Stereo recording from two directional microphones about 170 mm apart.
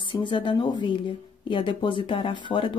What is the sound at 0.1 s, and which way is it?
Speech, 30° left (ahead or behind).